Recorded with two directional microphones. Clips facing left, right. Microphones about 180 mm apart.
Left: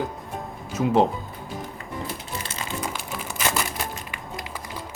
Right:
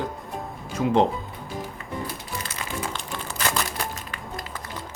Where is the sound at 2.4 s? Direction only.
25° left (ahead or behind).